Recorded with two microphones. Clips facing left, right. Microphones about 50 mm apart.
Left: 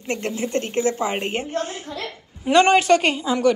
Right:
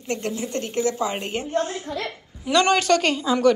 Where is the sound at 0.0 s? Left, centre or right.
Left.